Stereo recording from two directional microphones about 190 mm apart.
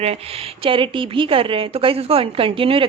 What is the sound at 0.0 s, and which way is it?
A woman's voice, 30° right (ahead or behind).